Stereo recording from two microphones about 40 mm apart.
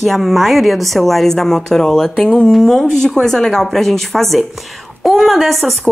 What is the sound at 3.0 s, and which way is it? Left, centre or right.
A woman's voice, centre.